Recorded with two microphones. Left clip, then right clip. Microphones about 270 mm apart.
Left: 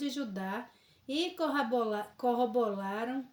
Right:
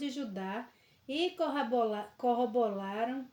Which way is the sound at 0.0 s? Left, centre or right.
Left.